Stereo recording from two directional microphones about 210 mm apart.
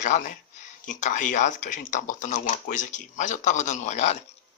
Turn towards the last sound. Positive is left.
turn(degrees=35)  # may be behind; listen again after turning